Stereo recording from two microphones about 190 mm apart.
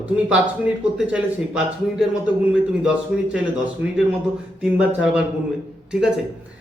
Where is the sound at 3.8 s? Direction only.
65° right (ahead or behind).